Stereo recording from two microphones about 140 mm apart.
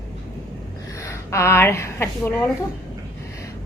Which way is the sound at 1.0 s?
20° left (ahead or behind).